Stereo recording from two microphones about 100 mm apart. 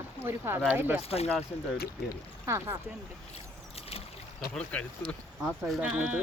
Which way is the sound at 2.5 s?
30° right (ahead or behind).